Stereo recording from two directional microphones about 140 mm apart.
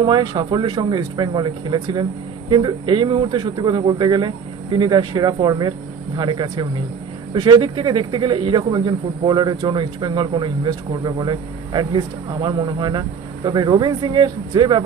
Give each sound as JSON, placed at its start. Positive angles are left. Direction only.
{"t": 0.0, "sound": "speech", "side_deg": -35}